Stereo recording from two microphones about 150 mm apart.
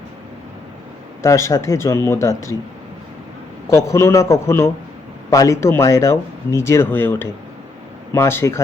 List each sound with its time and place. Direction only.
1.2 s speech: 20° left (ahead or behind)
3.7 s speech: 20° left (ahead or behind)